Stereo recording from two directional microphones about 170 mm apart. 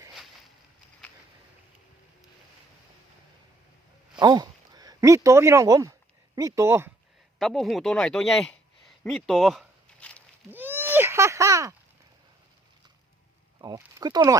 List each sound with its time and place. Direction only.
4.2 s speech: 25° right (ahead or behind)
7.3 s speech: centre (ahead or behind)
10.5 s a sound: 10° right (ahead or behind)
13.6 s speech: 20° right (ahead or behind)